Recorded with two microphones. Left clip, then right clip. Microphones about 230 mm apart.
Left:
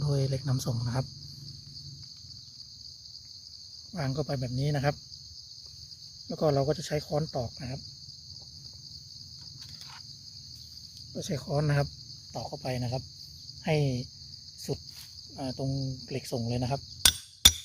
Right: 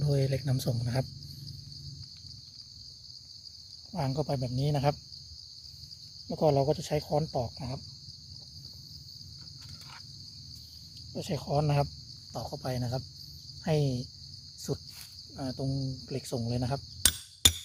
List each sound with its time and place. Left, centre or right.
0.0 s cricket: centre
3.9 s cricket: centre
6.2 s cricket: centre
11.3 s speech: left
12.3 s cricket: centre
13.7 s speech: centre
14.7 s cricket: centre